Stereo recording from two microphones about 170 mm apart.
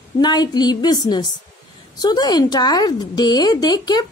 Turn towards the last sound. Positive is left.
turn(degrees=25)  # may be behind; listen again after turning